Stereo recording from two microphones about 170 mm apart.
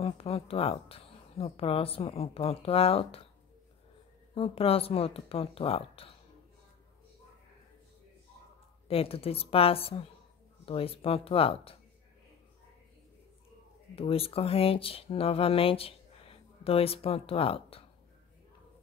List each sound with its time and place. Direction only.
0.0 s speech: 35° left (ahead or behind)
4.4 s speech: 35° left (ahead or behind)
8.8 s speech: 35° left (ahead or behind)
13.9 s speech: 35° left (ahead or behind)